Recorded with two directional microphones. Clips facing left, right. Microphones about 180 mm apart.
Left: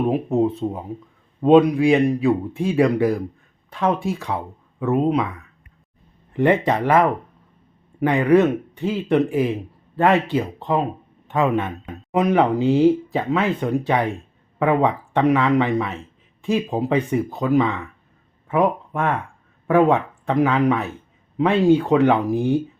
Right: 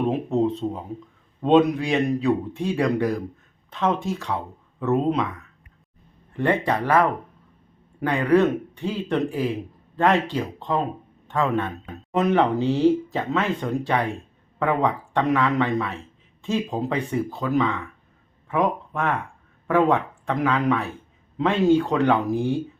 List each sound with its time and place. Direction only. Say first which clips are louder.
0.0 s a man's voice: left 3 dB; 10° left (ahead or behind)
6.3 s a man's voice: left 4 dB; 15° left (ahead or behind)